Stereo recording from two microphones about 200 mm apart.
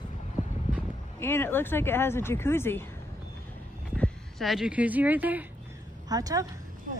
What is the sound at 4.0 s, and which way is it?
A woman's voice, centre (ahead or behind).